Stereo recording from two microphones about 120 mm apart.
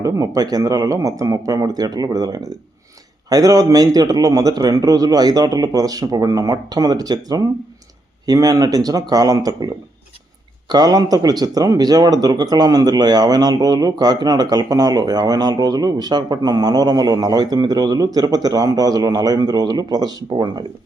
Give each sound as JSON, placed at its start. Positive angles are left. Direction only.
{"t": 0.0, "sound": "speech", "side_deg": -30}
{"t": 10.7, "sound": "speech", "side_deg": -35}